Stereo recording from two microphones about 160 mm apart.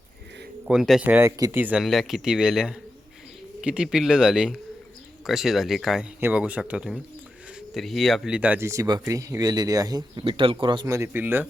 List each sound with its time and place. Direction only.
0.7 s speech: 5° right (ahead or behind)
1.8 s speech: centre (ahead or behind); by 10.9 s 30° right (ahead or behind)
10.9 s speech: 15° right (ahead or behind)